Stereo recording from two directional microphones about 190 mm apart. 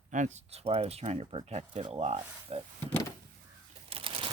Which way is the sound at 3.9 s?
30° right (ahead or behind).